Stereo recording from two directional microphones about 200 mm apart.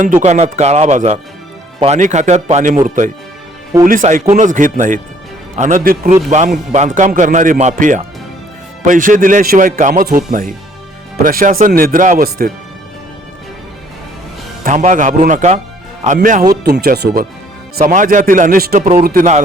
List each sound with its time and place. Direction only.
0.2 s speech: 35° right (ahead or behind)
14.6 s speech: 40° right (ahead or behind)
16.6 s speech: 55° right (ahead or behind)